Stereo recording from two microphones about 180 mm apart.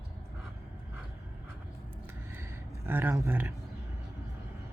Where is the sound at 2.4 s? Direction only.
15° right (ahead or behind).